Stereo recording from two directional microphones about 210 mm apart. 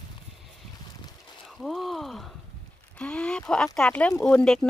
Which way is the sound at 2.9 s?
5° left (ahead or behind).